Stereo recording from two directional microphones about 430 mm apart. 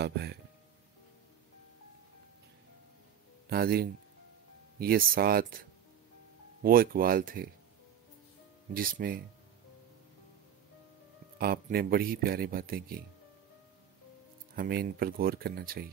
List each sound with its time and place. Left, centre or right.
0.0 s speech: right
3.4 s speech: right
8.7 s speech: centre
11.3 s speech: right
14.5 s speech: right